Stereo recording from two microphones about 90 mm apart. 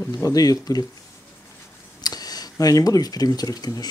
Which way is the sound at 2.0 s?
45° left (ahead or behind).